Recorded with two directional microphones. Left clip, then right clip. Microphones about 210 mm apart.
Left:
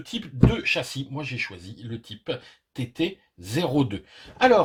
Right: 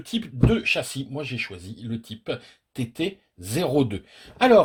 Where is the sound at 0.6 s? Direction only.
50° right (ahead or behind).